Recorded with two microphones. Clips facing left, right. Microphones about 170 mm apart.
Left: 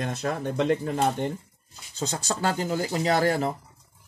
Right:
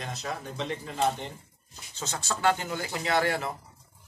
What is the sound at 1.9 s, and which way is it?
Speech, 35° left (ahead or behind).